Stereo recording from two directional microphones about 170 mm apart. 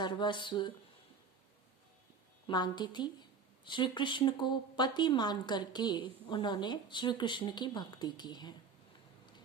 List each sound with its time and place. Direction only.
0.0 s speech: 25° left (ahead or behind)
2.5 s speech: 25° left (ahead or behind)